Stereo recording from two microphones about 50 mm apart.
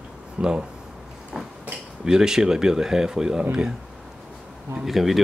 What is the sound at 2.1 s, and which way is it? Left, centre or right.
Speech, centre.